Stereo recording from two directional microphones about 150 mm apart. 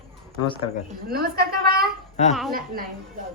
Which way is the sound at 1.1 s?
90° right.